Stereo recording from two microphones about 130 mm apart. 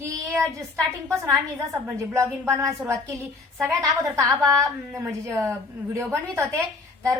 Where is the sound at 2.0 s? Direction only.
20° right (ahead or behind).